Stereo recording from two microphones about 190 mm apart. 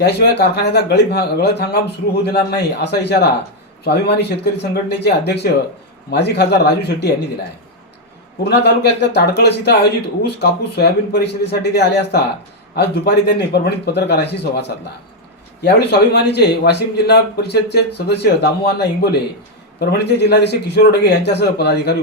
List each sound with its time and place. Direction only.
0.0 s a man's voice: 60° left (ahead or behind)
8.4 s a man's voice: 60° left (ahead or behind)